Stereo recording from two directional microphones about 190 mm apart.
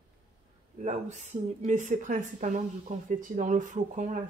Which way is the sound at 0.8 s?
35° right (ahead or behind).